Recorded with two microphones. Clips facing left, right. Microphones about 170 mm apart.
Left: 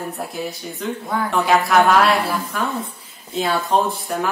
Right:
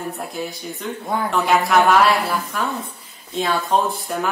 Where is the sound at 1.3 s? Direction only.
Centre (ahead or behind).